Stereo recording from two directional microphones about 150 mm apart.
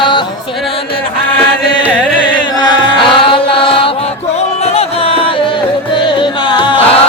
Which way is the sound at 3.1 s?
35° left (ahead or behind).